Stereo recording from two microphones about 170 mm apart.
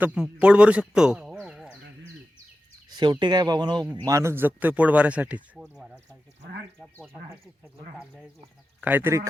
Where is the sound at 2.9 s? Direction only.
25° right (ahead or behind); by 5.8 s 5° right (ahead or behind).